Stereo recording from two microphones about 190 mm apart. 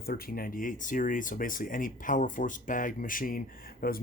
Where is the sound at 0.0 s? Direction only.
50° left (ahead or behind).